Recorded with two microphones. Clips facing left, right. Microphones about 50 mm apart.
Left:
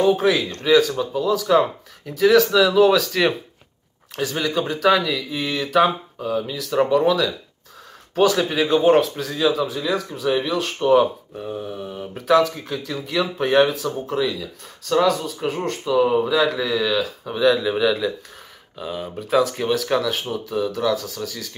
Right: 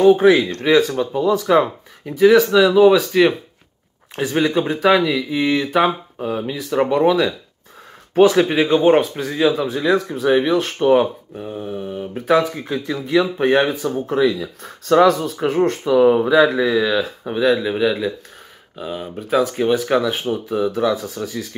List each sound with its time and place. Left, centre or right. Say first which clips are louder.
0.3 s speech: right 3 dB; right
6.7 s speech: right 2 dB; centre
9.8 s speech: right 9 dB; right
10.8 s speech: right 1 dB; right
11.3 s mantra: right 2 dB; centre
12.2 s speech: even; right
13.9 s speech: right 6 dB; right
17.4 s speech: right 1 dB; centre